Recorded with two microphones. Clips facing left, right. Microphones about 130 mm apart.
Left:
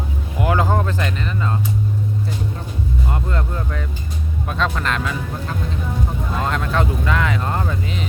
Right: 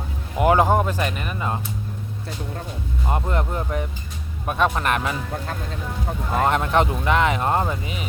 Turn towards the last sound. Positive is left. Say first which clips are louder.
# right 2 dB
turn(degrees=-20)  # may be behind; listen again after turning